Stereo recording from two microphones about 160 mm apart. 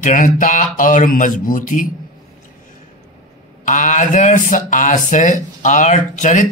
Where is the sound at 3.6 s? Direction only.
50° left (ahead or behind).